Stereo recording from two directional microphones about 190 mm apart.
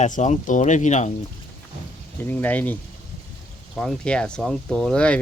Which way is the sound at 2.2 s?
10° left (ahead or behind).